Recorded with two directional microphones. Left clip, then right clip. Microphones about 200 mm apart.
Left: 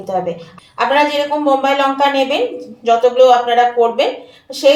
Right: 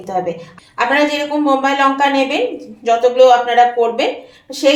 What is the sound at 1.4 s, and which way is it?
A woman's voice, 30° right (ahead or behind).